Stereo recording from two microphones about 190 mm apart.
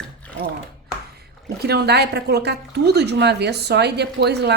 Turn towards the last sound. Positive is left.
turn(degrees=-60)  # may be behind; listen again after turning